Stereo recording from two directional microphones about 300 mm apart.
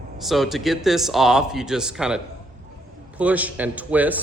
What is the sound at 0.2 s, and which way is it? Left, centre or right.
A man's voice, centre.